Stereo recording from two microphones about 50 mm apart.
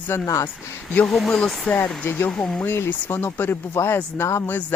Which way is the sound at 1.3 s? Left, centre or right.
Centre.